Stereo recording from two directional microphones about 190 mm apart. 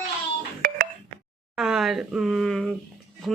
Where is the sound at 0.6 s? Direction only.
50° right (ahead or behind).